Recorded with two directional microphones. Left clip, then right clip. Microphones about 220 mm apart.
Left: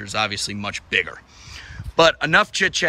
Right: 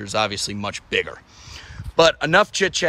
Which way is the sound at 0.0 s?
10° right (ahead or behind).